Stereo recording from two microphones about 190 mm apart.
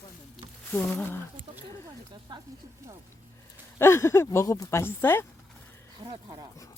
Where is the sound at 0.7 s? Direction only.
10° left (ahead or behind).